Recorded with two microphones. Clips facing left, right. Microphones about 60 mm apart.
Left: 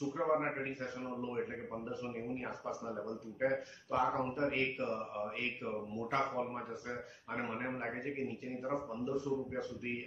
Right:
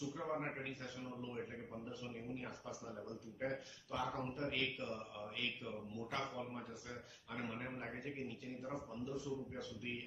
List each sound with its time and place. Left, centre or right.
0.0 s a man's voice: left